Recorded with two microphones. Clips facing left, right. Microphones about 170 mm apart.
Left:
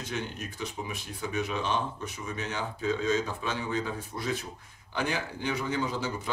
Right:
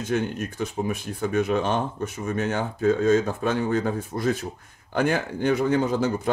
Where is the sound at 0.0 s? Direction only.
50° right (ahead or behind).